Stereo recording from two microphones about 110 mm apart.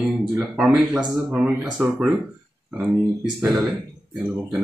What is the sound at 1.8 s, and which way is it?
Speech, 15° right (ahead or behind).